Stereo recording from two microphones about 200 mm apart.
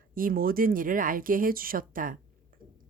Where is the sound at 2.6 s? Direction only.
45° right (ahead or behind).